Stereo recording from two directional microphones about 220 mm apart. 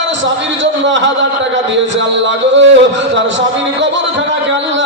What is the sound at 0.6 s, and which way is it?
Music, 55° right (ahead or behind).